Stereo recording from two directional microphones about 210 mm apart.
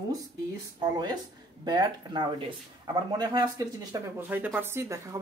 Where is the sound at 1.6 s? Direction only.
20° right (ahead or behind).